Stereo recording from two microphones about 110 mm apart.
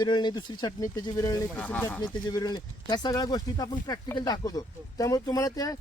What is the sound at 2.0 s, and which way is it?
Speech, 40° left (ahead or behind).